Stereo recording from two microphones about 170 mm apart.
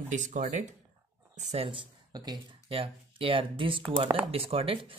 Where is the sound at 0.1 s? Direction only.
45° right (ahead or behind).